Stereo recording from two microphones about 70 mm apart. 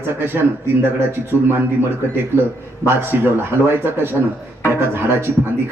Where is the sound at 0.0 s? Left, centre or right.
Right.